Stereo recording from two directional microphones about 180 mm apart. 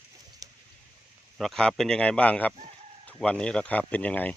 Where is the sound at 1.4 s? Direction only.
5° left (ahead or behind).